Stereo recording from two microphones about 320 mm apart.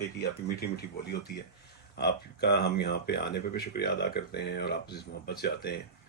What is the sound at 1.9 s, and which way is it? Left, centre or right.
Speech, left.